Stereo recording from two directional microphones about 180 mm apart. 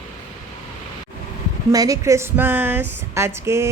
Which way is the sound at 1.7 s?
20° right (ahead or behind).